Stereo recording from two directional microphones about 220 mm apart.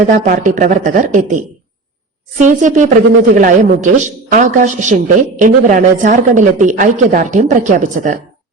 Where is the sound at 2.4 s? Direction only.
35° right (ahead or behind).